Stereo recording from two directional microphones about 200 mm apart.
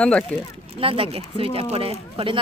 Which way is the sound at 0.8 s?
25° right (ahead or behind).